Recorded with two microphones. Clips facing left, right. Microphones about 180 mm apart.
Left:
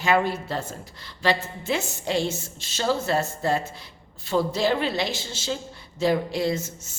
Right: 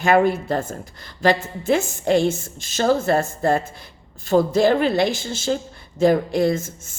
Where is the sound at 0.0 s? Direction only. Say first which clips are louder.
Right 6 dB; 50° right (ahead or behind).